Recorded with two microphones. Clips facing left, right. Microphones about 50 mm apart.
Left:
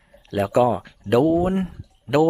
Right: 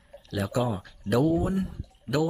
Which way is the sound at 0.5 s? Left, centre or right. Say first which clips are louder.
Left 12 dB; left.